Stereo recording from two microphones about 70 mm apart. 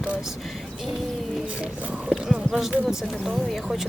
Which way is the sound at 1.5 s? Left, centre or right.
Centre.